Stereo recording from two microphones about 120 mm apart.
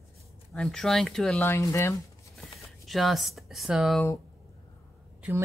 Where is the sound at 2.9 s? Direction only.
Centre (ahead or behind).